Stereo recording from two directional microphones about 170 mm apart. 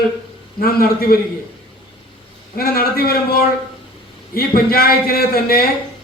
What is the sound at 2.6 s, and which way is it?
A man's voice, 60° left (ahead or behind).